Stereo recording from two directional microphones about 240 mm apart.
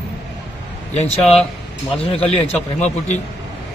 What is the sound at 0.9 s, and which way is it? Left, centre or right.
A man's voice, left.